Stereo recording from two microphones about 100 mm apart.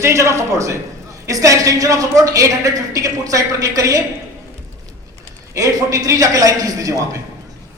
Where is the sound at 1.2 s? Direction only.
35° right (ahead or behind).